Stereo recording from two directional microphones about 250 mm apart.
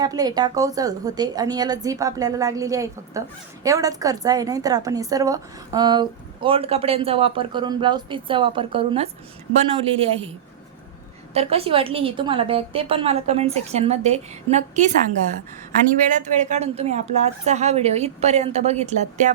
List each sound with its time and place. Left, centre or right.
0.0 s a woman's voice: centre
11.3 s a woman's voice: right
16.0 s a woman's voice: right